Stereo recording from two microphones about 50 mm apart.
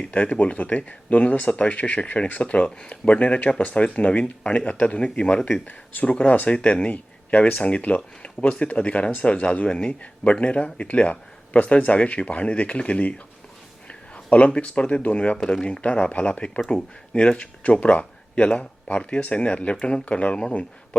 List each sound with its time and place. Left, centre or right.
0.1 s speech: left
3.6 s speech: left
5.4 s speech: centre
5.6 s speech: left